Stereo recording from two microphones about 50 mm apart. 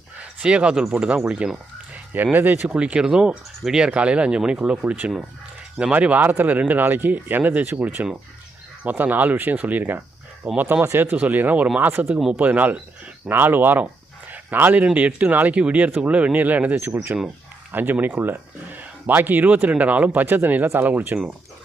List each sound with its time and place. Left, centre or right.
0.2 s a sound: right
0.9 s speech: right
2.1 s speech: right
2.7 s speech: right
13.3 s speech: right
16.7 s speech: right